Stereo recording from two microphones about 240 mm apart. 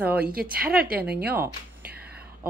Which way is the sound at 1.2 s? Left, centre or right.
Centre.